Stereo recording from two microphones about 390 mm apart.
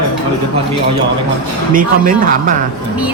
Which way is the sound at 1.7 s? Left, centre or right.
Right.